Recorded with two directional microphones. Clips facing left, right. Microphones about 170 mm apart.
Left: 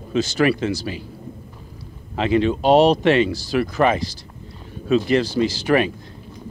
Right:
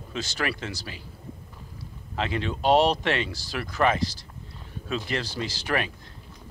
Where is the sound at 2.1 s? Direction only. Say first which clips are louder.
Left 11 dB; 15° left (ahead or behind).